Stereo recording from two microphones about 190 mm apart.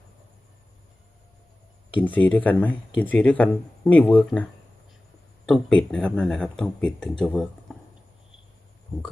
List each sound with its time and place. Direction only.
2.0 s speech: 10° left (ahead or behind)
5.5 s speech: 5° left (ahead or behind)